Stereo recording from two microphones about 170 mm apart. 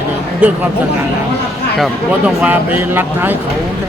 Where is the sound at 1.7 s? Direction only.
5° right (ahead or behind).